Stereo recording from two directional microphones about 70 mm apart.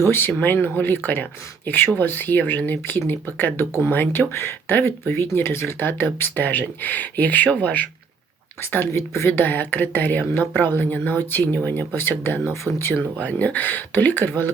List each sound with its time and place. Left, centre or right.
0.1 s a woman's voice: left
8.6 s a woman's voice: left